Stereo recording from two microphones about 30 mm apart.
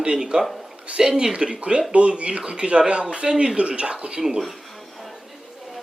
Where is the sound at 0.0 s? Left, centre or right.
Right.